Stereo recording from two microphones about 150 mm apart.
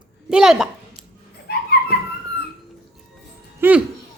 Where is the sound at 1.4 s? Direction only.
90° left.